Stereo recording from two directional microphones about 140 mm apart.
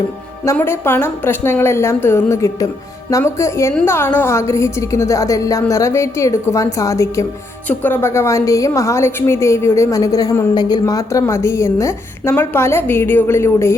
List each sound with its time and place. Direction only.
0.5 s a woman's voice: 15° left (ahead or behind)